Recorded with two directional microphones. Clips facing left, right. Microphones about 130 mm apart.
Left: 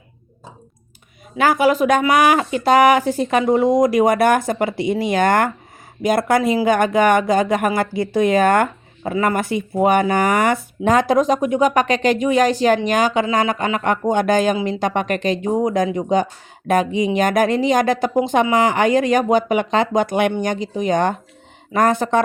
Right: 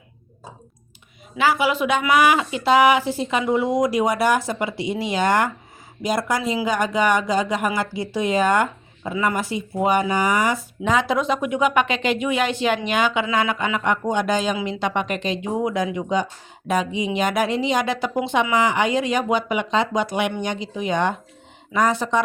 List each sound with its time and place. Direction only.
1.4 s speech: 45° left (ahead or behind)